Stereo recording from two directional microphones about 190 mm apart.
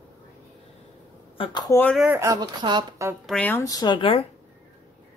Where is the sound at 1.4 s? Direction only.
25° left (ahead or behind).